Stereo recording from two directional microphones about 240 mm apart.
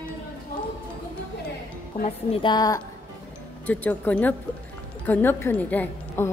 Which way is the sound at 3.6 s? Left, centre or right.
Centre.